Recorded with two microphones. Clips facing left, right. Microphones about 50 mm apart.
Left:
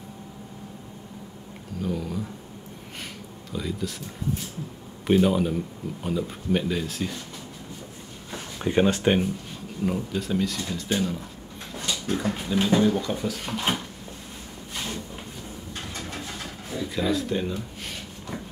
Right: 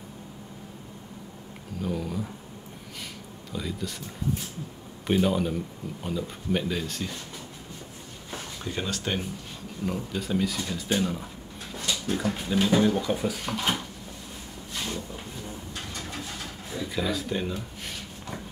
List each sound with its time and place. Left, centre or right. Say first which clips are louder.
1.8 s speech: left 1 dB; centre
3.5 s speech: left 3 dB; centre
5.0 s speech: left 3 dB; centre
8.5 s speech: left 12 dB; left
9.8 s speech: left 3 dB; centre
12.6 s speech: left 1 dB; centre
13.5 s speech: left 3 dB; centre
16.9 s speech: left 4 dB; centre